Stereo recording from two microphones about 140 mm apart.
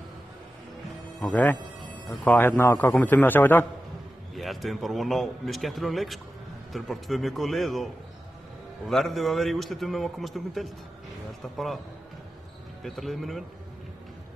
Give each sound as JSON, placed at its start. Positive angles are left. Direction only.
{"t": 1.2, "sound": "a man's voice", "side_deg": 15}
{"t": 4.4, "sound": "a man's voice", "side_deg": 0}
{"t": 12.8, "sound": "a man's voice", "side_deg": 0}